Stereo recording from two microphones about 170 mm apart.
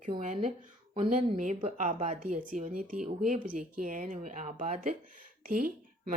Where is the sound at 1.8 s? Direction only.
50° right (ahead or behind).